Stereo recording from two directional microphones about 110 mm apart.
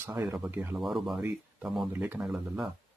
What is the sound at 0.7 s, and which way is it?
Speech, centre (ahead or behind).